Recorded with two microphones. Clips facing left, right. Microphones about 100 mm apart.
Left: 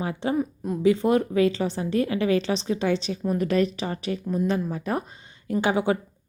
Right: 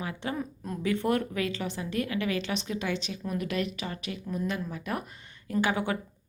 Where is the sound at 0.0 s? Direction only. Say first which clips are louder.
Left 7 dB; 30° left (ahead or behind).